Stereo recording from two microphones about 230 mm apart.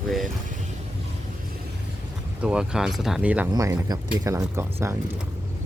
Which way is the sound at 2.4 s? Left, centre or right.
Centre.